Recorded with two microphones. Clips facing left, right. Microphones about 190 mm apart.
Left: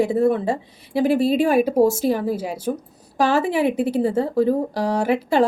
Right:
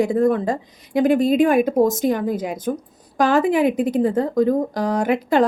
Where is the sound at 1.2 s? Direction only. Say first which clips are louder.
Right 2 dB; 30° left (ahead or behind).